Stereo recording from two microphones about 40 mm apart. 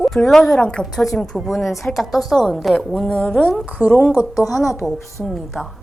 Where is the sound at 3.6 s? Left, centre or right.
Right.